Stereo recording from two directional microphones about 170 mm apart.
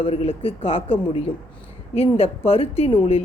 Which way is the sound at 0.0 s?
35° left (ahead or behind).